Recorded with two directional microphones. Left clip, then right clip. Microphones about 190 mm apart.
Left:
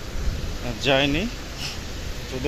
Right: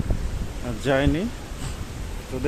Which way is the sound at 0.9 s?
20° right (ahead or behind).